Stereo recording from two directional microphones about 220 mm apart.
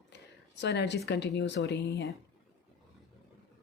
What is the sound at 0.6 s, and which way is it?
Speech, 50° left (ahead or behind).